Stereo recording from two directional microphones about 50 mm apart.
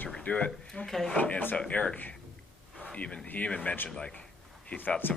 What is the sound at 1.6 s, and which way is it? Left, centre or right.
Speech, left.